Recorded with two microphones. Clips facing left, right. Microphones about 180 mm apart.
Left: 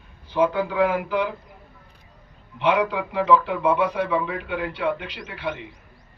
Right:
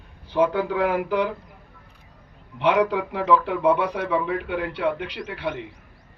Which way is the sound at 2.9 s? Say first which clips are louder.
Left 1 dB; 45° right (ahead or behind).